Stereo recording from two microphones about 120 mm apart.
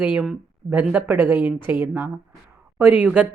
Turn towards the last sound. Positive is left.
turn(degrees=-15)  # may be behind; listen again after turning